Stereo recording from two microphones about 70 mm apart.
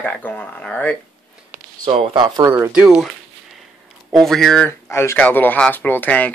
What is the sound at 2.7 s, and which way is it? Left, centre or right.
Speech, centre.